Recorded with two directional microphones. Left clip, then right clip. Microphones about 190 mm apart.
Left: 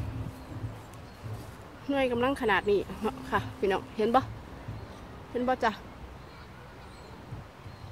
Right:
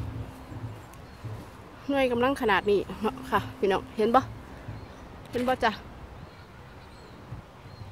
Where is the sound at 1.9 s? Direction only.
30° right (ahead or behind).